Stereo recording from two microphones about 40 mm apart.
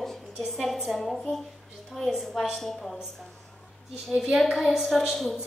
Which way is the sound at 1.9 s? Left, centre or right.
Centre.